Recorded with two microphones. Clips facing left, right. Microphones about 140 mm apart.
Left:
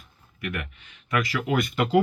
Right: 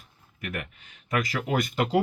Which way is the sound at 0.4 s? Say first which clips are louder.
Left 2 dB; 40° right (ahead or behind).